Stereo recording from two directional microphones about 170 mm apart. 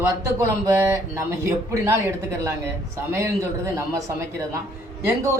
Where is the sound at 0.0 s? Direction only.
15° right (ahead or behind).